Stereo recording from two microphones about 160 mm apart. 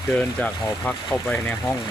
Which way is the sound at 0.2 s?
5° left (ahead or behind).